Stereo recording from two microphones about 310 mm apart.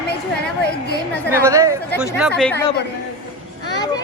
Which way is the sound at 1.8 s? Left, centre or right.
Centre.